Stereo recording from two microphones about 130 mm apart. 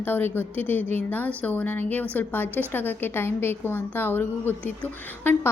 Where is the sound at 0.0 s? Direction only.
15° left (ahead or behind).